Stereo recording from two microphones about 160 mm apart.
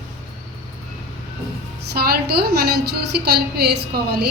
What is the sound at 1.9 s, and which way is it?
A woman's voice, 75° right (ahead or behind).